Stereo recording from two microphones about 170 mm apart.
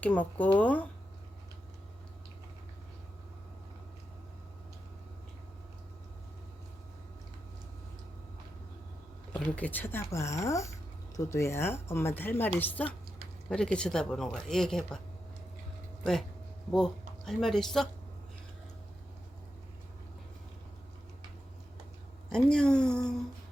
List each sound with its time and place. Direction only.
0.0 s speech: 10° left (ahead or behind)
9.3 s speech: 10° left (ahead or behind)
16.7 s speech: 5° left (ahead or behind)
22.3 s speech: 5° left (ahead or behind)